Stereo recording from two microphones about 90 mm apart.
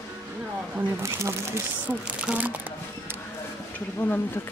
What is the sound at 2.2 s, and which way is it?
Speech, 15° right (ahead or behind).